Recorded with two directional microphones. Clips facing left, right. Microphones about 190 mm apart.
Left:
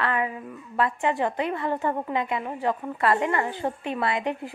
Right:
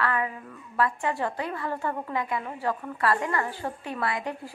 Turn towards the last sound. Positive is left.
turn(degrees=20)  # may be behind; listen again after turning